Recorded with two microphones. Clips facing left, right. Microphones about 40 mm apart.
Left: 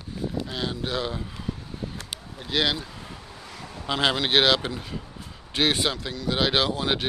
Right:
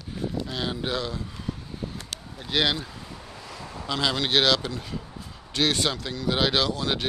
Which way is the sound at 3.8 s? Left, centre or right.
Left.